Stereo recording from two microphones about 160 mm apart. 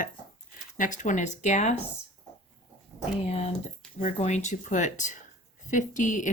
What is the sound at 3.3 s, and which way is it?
Speech, 45° left (ahead or behind).